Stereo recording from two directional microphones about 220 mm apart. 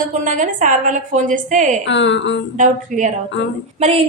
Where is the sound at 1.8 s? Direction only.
55° left (ahead or behind).